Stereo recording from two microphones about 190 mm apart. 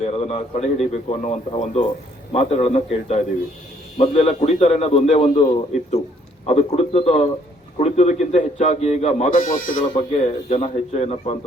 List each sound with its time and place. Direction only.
0.0 s a man's voice: 30° left (ahead or behind)
9.8 s a man's voice: 35° left (ahead or behind)